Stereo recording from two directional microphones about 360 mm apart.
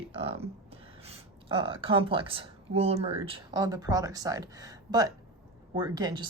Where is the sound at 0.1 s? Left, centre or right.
Centre.